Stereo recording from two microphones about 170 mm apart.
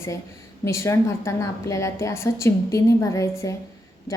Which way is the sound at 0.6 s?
15° left (ahead or behind).